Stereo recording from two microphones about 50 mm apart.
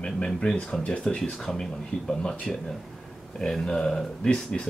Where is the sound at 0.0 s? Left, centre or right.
Centre.